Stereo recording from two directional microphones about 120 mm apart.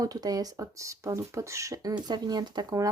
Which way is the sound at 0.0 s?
30° right (ahead or behind).